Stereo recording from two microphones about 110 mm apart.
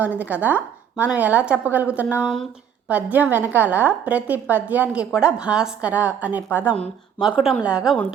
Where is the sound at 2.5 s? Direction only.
10° right (ahead or behind).